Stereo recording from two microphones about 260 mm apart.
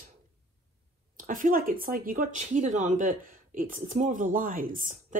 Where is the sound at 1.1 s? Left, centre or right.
Right.